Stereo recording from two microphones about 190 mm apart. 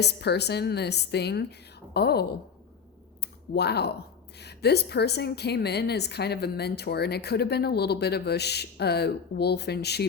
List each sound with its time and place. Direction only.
0.0 s a woman's voice: 60° left (ahead or behind)
3.5 s a woman's voice: 60° left (ahead or behind)